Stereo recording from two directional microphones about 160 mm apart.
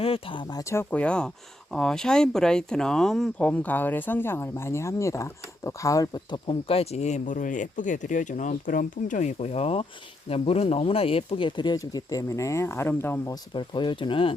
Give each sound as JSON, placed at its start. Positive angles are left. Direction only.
{"t": 0.0, "sound": "speech", "side_deg": 35}
{"t": 0.6, "sound": "speech", "side_deg": 15}
{"t": 6.5, "sound": "speech", "side_deg": 35}